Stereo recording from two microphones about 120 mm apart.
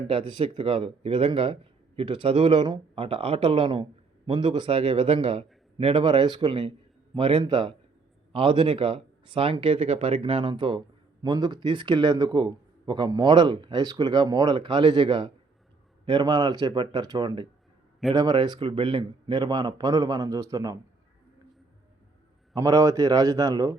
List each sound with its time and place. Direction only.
0.1 s a man's voice: 45° right (ahead or behind); by 20.7 s 30° right (ahead or behind)
22.5 s a man's voice: 30° right (ahead or behind)